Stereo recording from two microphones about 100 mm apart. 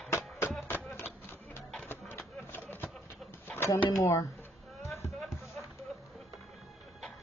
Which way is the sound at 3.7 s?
30° left (ahead or behind).